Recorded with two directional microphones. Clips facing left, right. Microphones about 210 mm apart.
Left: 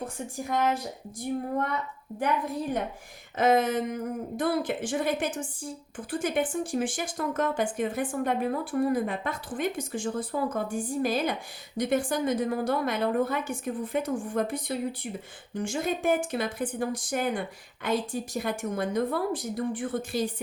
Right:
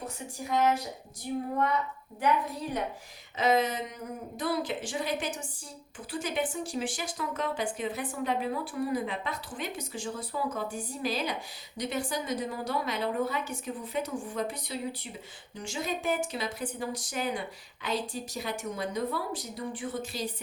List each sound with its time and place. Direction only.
1.2 s speech: 50° left (ahead or behind)
3.3 s speech: 50° left (ahead or behind)